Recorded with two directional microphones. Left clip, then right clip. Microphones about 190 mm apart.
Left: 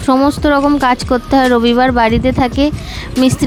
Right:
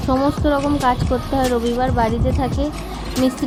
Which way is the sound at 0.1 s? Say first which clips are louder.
Left 7 dB; 45° left (ahead or behind).